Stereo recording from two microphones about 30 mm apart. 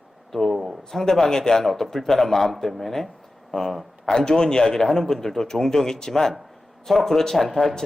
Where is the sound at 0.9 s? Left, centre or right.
Centre.